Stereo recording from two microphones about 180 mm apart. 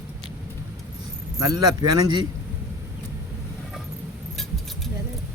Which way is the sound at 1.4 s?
20° right (ahead or behind).